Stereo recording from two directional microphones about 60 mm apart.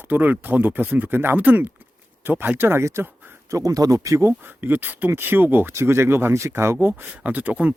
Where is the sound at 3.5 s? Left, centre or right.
Right.